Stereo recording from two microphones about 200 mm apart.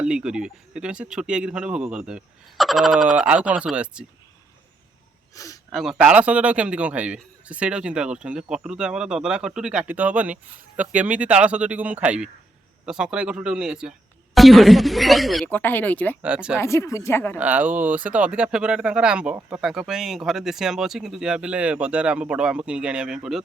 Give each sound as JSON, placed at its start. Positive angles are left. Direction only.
{"t": 0.0, "sound": "speech", "side_deg": -5}
{"t": 5.3, "sound": "speech", "side_deg": 15}
{"t": 5.7, "sound": "speech", "side_deg": 0}
{"t": 16.2, "sound": "speech", "side_deg": -5}
{"t": 16.6, "sound": "speech", "side_deg": 15}
{"t": 17.3, "sound": "speech", "side_deg": -10}